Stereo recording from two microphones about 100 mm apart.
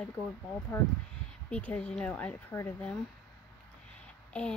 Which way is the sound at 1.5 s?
15° left (ahead or behind).